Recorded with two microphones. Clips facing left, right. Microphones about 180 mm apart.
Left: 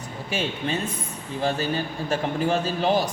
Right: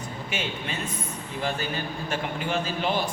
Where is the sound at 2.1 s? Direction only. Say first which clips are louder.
Left 6 dB; 40° left (ahead or behind).